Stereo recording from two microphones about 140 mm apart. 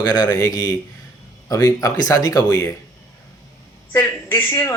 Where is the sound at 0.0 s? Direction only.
25° left (ahead or behind).